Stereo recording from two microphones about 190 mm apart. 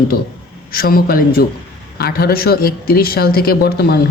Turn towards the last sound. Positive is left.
turn(degrees=55)  # may be behind; listen again after turning